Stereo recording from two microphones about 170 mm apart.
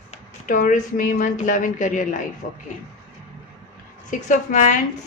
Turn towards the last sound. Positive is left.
turn(degrees=45)  # may be behind; listen again after turning